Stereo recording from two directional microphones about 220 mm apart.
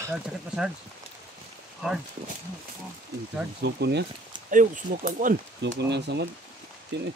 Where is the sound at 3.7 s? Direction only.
50° right (ahead or behind).